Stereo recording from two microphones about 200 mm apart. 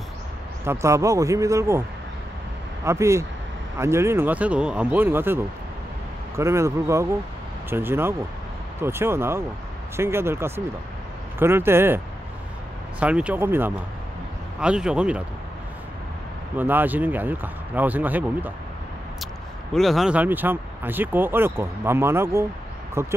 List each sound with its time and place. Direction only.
0.7 s speech: 15° right (ahead or behind)
2.8 s speech: 15° right (ahead or behind)
13.0 s speech: 5° right (ahead or behind)
16.5 s speech: 10° right (ahead or behind)
19.7 s speech: centre (ahead or behind)